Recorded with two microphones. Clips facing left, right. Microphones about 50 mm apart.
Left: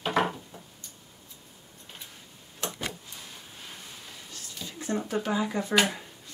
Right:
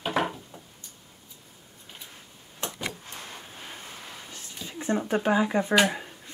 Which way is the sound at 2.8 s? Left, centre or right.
Right.